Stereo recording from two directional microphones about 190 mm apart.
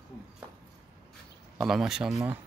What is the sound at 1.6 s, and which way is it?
Speech, centre (ahead or behind).